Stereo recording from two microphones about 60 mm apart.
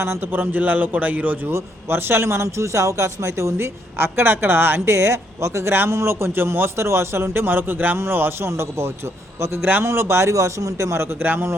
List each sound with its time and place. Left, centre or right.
0.0 s a man's voice: right
1.5 s speech: right
4.9 s speech: right
5.7 s a man's voice: right
10.9 s speech: right